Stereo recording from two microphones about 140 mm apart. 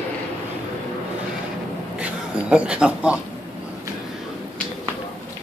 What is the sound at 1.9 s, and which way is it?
Speech, 10° right (ahead or behind).